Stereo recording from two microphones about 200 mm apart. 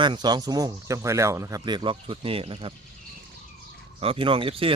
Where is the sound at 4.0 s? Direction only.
25° right (ahead or behind).